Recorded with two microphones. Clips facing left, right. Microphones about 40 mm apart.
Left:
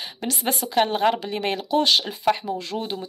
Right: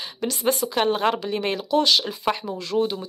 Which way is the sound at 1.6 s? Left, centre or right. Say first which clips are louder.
Even; left.